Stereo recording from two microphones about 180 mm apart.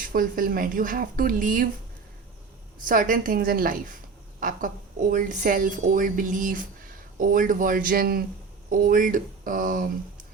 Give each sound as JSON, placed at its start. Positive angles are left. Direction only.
{"t": 0.0, "sound": "a woman's voice", "side_deg": -50}
{"t": 2.8, "sound": "a woman's voice", "side_deg": -50}